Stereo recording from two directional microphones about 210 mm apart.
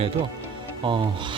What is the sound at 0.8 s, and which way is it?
Speech, 25° right (ahead or behind).